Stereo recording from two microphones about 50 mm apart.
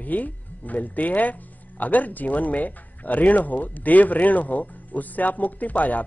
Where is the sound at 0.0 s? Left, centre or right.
Left.